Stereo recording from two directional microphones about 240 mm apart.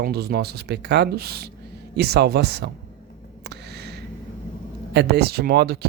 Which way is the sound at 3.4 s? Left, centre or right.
Right.